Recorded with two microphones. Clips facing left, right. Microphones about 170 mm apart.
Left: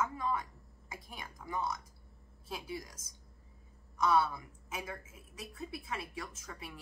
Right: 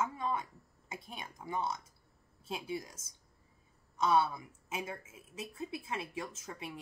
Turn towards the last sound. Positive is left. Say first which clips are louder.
# right 3 dB
turn(degrees=-25)  # may be behind; listen again after turning